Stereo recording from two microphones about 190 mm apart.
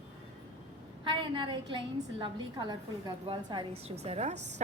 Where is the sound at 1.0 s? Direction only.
25° right (ahead or behind).